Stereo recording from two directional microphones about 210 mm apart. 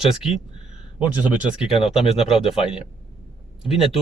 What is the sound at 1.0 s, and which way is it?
Speech, 5° right (ahead or behind).